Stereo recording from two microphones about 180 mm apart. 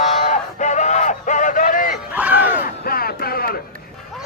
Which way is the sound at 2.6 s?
55° left (ahead or behind).